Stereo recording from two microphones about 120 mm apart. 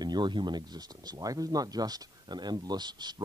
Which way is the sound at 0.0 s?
40° right (ahead or behind).